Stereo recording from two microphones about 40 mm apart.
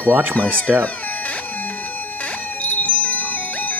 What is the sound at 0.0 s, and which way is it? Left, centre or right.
Speech, right.